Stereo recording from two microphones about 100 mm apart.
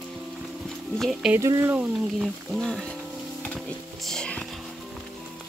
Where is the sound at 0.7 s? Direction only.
5° left (ahead or behind).